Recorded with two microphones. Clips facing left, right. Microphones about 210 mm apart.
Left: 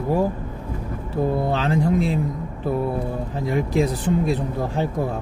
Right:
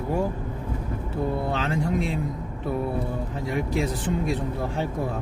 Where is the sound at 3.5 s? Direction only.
35° left (ahead or behind).